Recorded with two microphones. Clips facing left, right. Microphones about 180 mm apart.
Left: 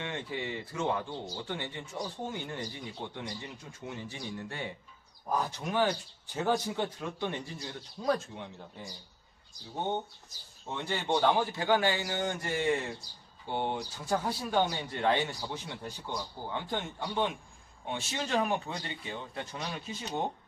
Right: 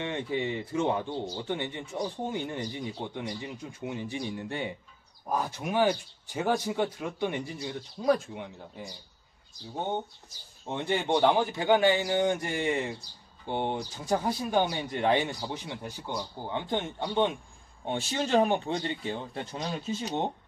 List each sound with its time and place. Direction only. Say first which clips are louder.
0.0 s speech: right 6 dB; 20° right (ahead or behind)
10.7 s speech: right 4 dB; 20° right (ahead or behind)